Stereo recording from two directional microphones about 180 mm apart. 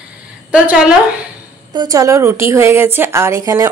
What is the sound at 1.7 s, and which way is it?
A woman's voice, 20° right (ahead or behind).